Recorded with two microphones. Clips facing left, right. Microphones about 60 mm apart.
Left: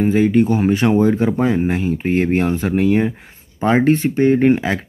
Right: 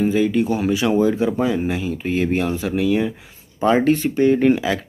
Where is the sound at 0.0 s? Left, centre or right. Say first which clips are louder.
Left 3 dB; left.